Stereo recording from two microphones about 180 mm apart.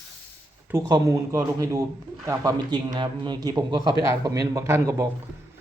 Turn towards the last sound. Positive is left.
turn(degrees=-15)  # may be behind; listen again after turning